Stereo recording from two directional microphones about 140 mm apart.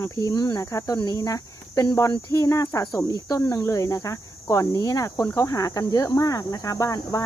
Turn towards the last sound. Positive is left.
turn(degrees=25)  # may be behind; listen again after turning